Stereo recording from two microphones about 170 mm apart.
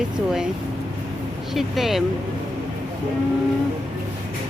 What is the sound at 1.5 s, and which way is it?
Speech, centre (ahead or behind).